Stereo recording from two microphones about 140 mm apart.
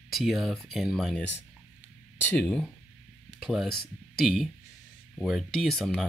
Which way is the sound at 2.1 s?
10° left (ahead or behind).